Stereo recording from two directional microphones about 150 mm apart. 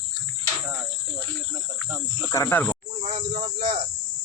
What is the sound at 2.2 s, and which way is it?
Speech, 20° left (ahead or behind).